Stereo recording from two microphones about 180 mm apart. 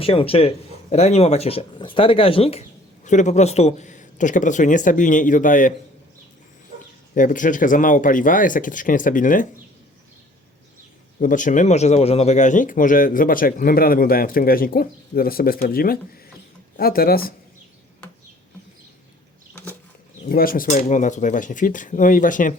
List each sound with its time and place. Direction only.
0.0 s speech: 30° left (ahead or behind); by 5.7 s 45° left (ahead or behind)
7.1 s speech: 50° left (ahead or behind)
11.2 s speech: 45° left (ahead or behind)
20.2 s speech: 55° left (ahead or behind)